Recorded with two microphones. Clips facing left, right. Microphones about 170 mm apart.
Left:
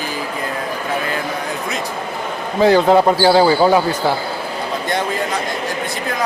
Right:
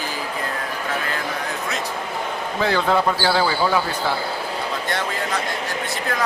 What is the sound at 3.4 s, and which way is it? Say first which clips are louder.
Speech: left 7 dB; 35° left (ahead or behind).